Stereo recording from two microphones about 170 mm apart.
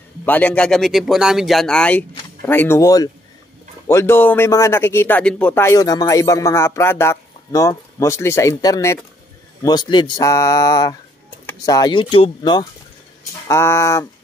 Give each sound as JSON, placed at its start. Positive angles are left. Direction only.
{"t": 0.2, "sound": "a man's voice", "side_deg": 10}
{"t": 13.5, "sound": "a man's voice", "side_deg": 15}